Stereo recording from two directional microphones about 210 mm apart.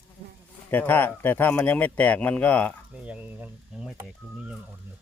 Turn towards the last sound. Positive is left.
turn(degrees=-10)  # may be behind; listen again after turning